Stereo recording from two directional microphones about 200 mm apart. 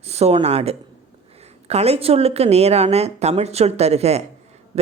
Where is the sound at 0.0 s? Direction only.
30° right (ahead or behind).